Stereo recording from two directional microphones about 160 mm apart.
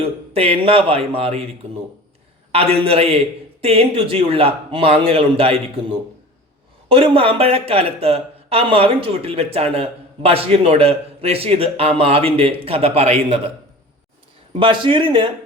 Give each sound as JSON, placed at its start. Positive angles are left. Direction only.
{"t": 0.0, "sound": "speech", "side_deg": -35}
{"t": 6.8, "sound": "speech", "side_deg": -35}
{"t": 14.6, "sound": "speech", "side_deg": -30}